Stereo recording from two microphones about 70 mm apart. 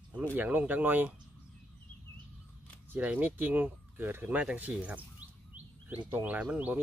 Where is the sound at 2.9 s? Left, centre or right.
Right.